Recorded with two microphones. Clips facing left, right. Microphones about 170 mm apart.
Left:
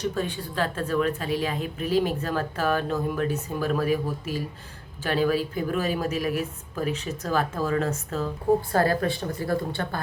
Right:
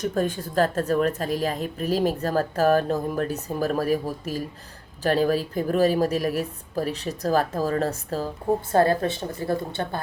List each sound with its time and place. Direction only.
0.0 s speech: 45° right (ahead or behind)
8.7 s a woman's voice: 25° right (ahead or behind)